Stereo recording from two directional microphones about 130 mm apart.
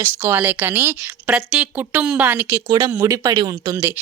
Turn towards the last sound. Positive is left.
turn(degrees=-20)  # may be behind; listen again after turning